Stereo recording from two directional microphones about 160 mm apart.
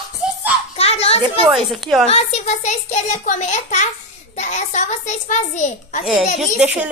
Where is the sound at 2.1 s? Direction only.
45° left (ahead or behind).